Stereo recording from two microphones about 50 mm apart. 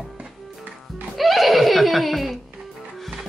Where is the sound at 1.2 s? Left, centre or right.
Centre.